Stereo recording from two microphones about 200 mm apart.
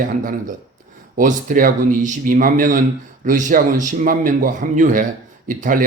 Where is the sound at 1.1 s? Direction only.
40° right (ahead or behind).